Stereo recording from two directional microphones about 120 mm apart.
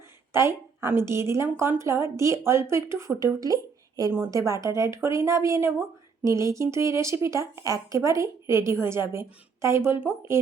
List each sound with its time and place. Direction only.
0.3 s speech: 20° right (ahead or behind)